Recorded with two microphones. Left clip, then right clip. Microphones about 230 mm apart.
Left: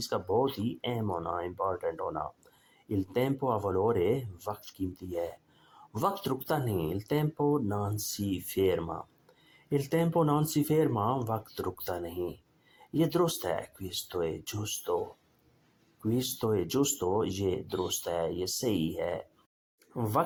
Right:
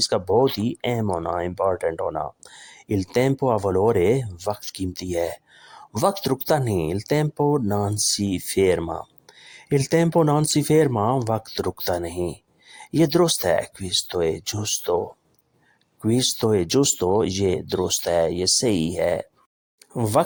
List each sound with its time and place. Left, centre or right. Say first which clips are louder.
0.0 s speech: right 10 dB; right
16.0 s speech: right 10 dB; right